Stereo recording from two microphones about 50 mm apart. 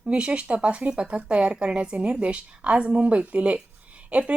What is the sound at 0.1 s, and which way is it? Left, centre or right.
Speech, right.